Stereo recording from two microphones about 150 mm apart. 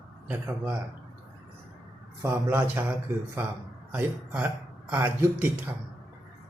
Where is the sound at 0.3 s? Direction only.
15° right (ahead or behind).